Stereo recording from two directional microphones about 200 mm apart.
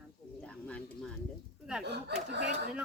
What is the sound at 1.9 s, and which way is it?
Speech, 55° right (ahead or behind).